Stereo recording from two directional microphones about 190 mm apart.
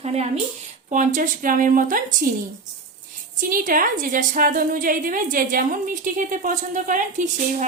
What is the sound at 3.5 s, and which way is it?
A woman's voice, 45° right (ahead or behind).